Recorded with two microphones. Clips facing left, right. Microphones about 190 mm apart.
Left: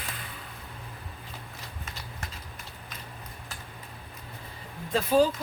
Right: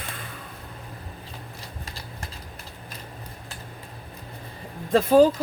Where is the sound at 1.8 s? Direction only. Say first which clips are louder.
Right 3 dB; 35° right (ahead or behind).